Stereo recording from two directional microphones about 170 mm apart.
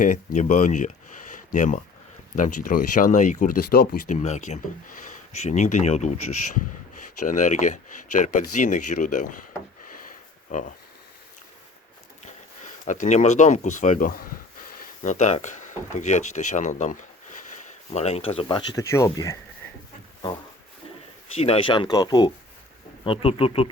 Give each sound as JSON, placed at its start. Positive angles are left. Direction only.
{"t": 0.0, "sound": "speech", "side_deg": 50}
{"t": 1.3, "sound": "a sound", "side_deg": 50}
{"t": 2.3, "sound": "speech", "side_deg": 50}
{"t": 4.1, "sound": "speech", "side_deg": 45}
{"t": 7.3, "sound": "speech", "side_deg": 45}
{"t": 9.9, "sound": "a sound", "side_deg": 50}
{"t": 12.2, "sound": "speech", "side_deg": 45}
{"t": 14.7, "sound": "a sound", "side_deg": 50}
{"t": 16.0, "sound": "speech", "side_deg": 45}
{"t": 21.3, "sound": "speech", "side_deg": 35}